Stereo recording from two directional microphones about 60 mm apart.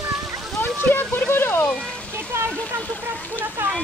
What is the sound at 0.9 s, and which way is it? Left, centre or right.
Speech, left.